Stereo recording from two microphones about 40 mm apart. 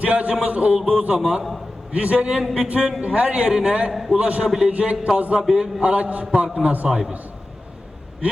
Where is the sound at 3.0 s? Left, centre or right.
Right.